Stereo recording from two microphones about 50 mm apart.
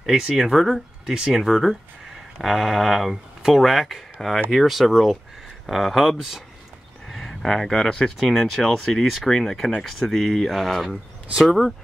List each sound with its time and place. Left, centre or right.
0.0 s speech: centre
7.2 s speech: centre